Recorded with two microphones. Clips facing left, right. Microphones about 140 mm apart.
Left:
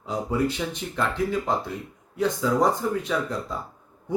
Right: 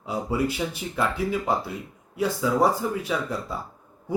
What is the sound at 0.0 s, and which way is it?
Speech, 10° right (ahead or behind).